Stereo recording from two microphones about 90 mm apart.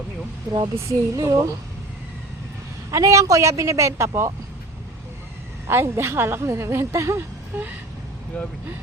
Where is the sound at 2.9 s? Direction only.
35° right (ahead or behind).